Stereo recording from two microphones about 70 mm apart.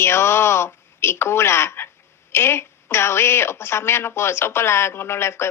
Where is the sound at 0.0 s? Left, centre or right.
Left.